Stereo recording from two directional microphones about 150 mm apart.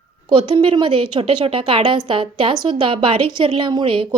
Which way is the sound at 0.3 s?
35° right (ahead or behind).